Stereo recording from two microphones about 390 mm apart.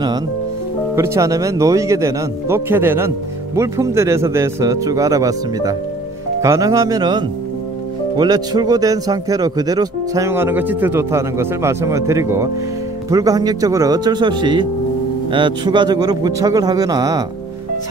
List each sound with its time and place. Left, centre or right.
0.9 s speech: centre